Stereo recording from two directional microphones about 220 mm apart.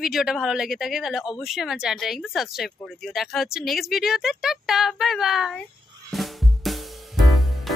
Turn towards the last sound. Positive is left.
turn(degrees=0)  # may be behind; listen again after turning